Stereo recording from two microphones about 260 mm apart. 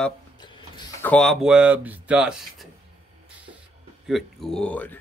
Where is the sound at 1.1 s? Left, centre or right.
Centre.